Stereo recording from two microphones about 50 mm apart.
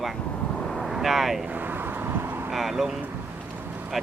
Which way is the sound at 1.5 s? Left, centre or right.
Right.